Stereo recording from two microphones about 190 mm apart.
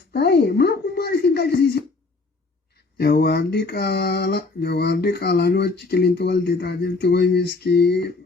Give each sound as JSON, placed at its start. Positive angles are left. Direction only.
{"t": 0.1, "sound": "speech", "side_deg": 60}
{"t": 3.0, "sound": "speech", "side_deg": 55}